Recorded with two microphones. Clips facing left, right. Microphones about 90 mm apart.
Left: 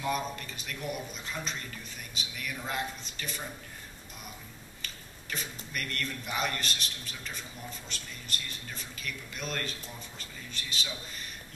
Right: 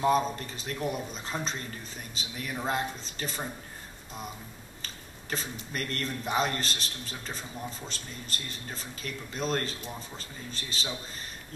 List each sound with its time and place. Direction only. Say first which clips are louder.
0.0 s a man's voice: right 7 dB; 35° right (ahead or behind)
4.8 s a man's voice: right 3 dB; 35° right (ahead or behind)